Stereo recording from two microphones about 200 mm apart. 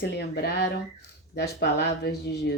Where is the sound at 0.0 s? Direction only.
55° left (ahead or behind).